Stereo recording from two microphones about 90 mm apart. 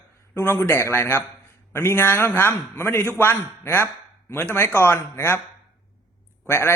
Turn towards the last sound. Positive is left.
turn(degrees=30)  # may be behind; listen again after turning